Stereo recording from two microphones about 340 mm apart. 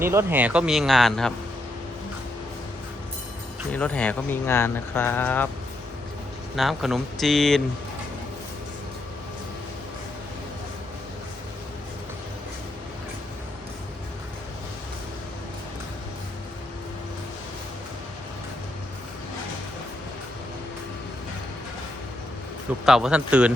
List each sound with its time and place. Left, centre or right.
0.0 s speech: centre
3.7 s speech: centre
6.6 s speech: centre
22.9 s speech: centre